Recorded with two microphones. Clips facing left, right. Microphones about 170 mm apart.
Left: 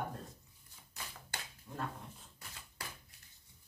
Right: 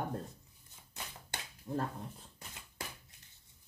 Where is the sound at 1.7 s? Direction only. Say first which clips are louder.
Right 9 dB; 35° right (ahead or behind).